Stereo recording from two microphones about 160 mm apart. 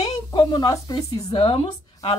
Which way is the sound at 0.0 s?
40° left (ahead or behind).